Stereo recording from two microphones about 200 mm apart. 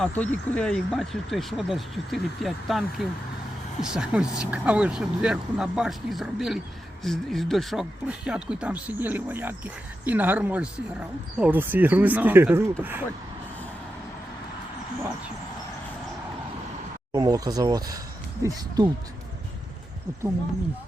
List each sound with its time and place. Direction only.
0.0 s speech: 5° left (ahead or behind); by 13.1 s 10° right (ahead or behind)
17.1 s speech: 20° right (ahead or behind)